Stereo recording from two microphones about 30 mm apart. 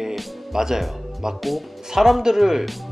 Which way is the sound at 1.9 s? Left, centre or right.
Centre.